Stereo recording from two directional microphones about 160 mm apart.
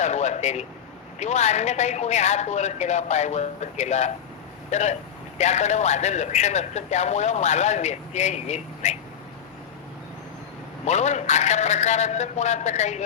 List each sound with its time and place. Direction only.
0.0 s a man's voice: 45° left (ahead or behind)
10.8 s a man's voice: 45° left (ahead or behind)